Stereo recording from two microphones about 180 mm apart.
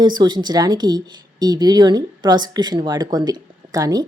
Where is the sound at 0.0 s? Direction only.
25° right (ahead or behind).